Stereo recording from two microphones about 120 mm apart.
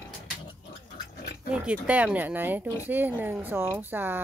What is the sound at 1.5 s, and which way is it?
Speech, 10° right (ahead or behind).